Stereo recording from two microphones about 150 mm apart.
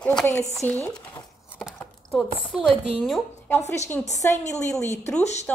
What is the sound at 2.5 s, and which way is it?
A woman's voice, centre (ahead or behind).